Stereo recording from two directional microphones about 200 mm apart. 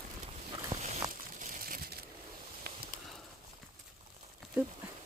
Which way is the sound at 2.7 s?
50° right (ahead or behind).